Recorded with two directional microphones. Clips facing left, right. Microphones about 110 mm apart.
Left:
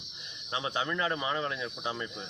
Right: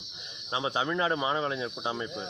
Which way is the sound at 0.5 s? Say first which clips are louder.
Right 3 dB; 25° right (ahead or behind).